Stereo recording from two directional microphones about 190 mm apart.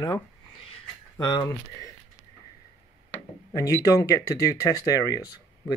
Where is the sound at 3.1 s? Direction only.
15° left (ahead or behind).